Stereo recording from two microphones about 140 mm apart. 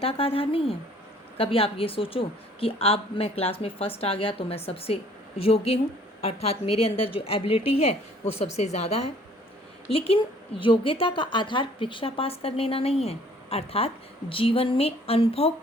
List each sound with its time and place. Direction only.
0.0 s a woman's voice: 40° left (ahead or behind)